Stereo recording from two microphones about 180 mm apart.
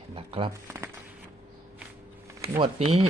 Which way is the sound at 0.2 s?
30° right (ahead or behind).